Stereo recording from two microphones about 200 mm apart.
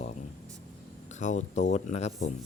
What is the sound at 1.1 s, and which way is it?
Speech, 35° left (ahead or behind).